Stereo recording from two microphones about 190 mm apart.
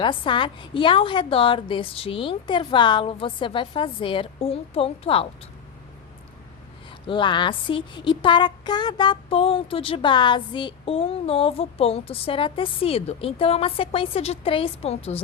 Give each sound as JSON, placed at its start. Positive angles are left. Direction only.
{"t": 0.0, "sound": "speech", "side_deg": 25}
{"t": 7.1, "sound": "speech", "side_deg": 25}